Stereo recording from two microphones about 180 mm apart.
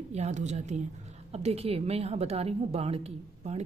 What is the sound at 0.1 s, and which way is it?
A woman's voice, 40° right (ahead or behind).